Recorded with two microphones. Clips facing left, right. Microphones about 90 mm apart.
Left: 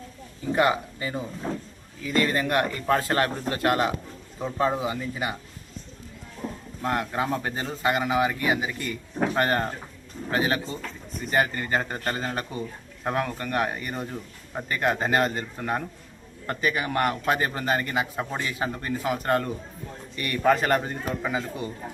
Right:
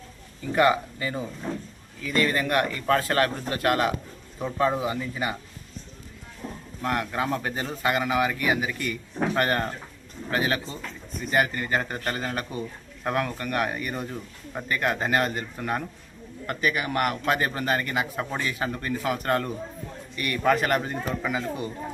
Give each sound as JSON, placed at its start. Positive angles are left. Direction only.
{"t": 0.4, "sound": "a man's voice", "side_deg": 25}
{"t": 6.8, "sound": "a man's voice", "side_deg": 25}
{"t": 20.1, "sound": "a man's voice", "side_deg": 35}